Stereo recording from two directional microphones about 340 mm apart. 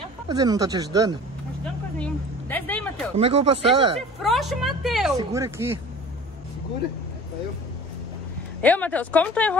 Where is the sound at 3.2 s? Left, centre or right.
Centre.